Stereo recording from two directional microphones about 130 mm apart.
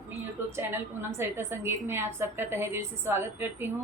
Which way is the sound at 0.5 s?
20° right (ahead or behind).